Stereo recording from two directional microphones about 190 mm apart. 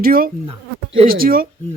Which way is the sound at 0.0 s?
50° right (ahead or behind).